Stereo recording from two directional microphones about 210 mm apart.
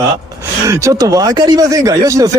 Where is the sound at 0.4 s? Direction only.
15° right (ahead or behind).